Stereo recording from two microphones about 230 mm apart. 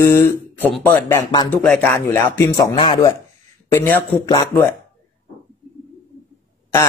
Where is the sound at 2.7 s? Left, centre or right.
Left.